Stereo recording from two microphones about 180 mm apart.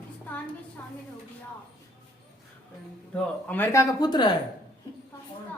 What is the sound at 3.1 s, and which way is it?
A woman's voice, 10° left (ahead or behind).